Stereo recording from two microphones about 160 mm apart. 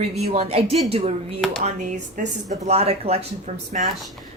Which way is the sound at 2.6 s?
40° right (ahead or behind).